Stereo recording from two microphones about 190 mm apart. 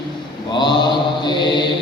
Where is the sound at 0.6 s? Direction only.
20° left (ahead or behind).